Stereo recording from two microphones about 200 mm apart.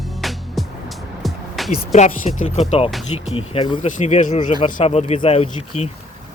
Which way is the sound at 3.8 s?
40° left (ahead or behind).